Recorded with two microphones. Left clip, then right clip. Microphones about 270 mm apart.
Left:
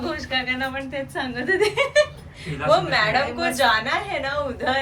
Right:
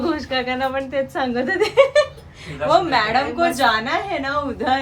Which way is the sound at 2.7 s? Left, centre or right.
Right.